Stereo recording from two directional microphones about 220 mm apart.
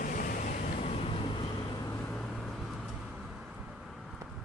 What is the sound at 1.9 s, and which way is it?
Vehicle, 5° left (ahead or behind).